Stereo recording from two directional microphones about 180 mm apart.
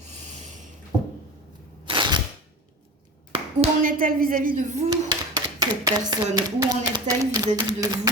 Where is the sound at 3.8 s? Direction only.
50° right (ahead or behind).